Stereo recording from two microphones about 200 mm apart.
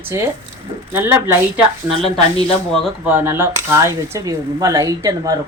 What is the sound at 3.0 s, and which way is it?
Speech, 10° right (ahead or behind).